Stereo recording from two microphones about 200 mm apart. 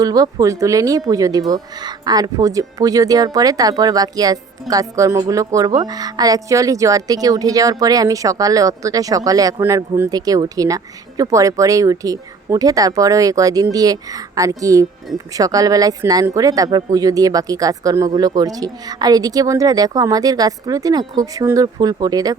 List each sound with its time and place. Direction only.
0.0 s speech: 20° right (ahead or behind)